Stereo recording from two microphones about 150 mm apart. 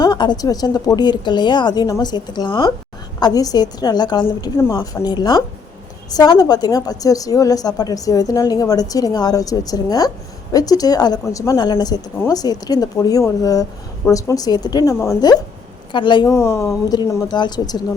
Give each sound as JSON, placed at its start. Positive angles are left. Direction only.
{"t": 0.0, "sound": "a woman's voice", "side_deg": 30}
{"t": 16.3, "sound": "a woman's voice", "side_deg": 20}